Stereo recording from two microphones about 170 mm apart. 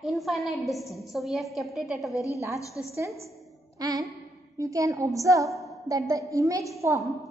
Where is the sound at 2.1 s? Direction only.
20° left (ahead or behind).